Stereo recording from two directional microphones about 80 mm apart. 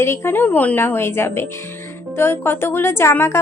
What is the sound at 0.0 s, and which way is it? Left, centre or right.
A woman's voice, left.